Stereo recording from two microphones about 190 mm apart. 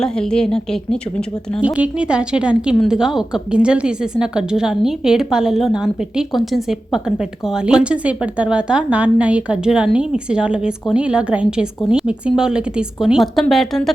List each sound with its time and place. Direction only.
0.0 s a woman's voice: 5° left (ahead or behind)
1.6 s a woman's voice: 5° right (ahead or behind)